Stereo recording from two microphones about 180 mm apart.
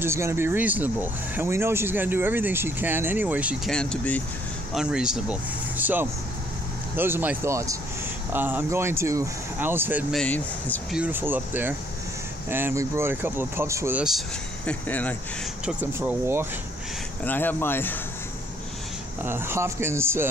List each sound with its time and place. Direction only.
0.0 s speech: 15° right (ahead or behind)
3.7 s speech: 5° left (ahead or behind)
4.7 s speech: 5° right (ahead or behind)
10.1 s speech: 10° left (ahead or behind)
10.9 s speech: 10° right (ahead or behind)
14.7 s speech: 10° left (ahead or behind)
15.6 s speech: 10° right (ahead or behind)
17.2 s speech: 10° left (ahead or behind)
19.2 s speech: 10° right (ahead or behind)